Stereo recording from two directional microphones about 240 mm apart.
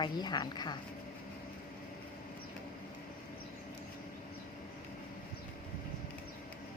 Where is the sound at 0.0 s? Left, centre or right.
Centre.